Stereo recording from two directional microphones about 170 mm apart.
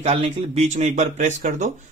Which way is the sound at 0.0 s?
40° right (ahead or behind).